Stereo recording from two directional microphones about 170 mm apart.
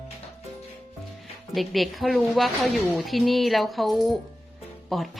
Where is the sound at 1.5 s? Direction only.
Centre (ahead or behind).